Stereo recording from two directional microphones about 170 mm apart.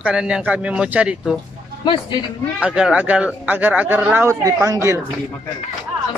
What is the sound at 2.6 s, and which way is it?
Speech, 5° right (ahead or behind).